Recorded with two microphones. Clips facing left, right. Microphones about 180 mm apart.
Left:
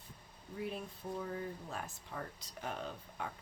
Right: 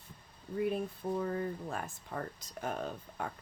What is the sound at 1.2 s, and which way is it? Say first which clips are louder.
Speech: right 6 dB; 55° right (ahead or behind).